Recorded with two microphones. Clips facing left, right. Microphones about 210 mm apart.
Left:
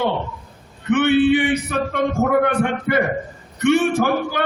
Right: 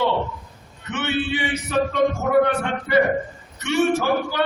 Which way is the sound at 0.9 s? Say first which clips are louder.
Left 10 dB; 55° left (ahead or behind).